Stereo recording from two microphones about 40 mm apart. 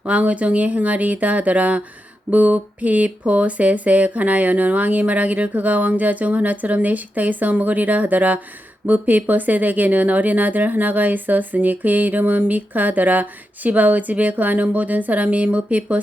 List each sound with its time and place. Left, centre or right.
0.1 s speech: right